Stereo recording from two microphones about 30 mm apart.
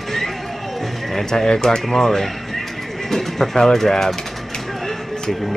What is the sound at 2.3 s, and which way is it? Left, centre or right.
Bird, centre.